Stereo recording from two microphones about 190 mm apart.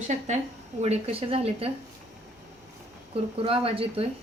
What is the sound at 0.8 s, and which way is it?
Speech, 30° right (ahead or behind).